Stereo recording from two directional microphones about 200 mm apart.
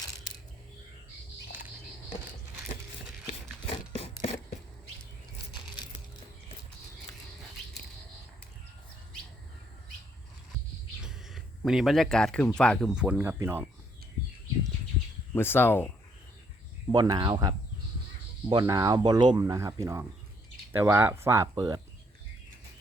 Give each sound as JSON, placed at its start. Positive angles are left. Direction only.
{"t": 3.2, "sound": "a sound", "side_deg": 35}
{"t": 11.0, "sound": "bird", "side_deg": 0}
{"t": 12.5, "sound": "speech", "side_deg": 5}
{"t": 15.4, "sound": "speech", "side_deg": 10}
{"t": 16.9, "sound": "speech", "side_deg": -20}